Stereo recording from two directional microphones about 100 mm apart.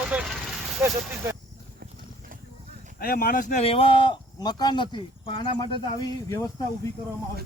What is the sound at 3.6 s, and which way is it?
Speech, 70° left (ahead or behind).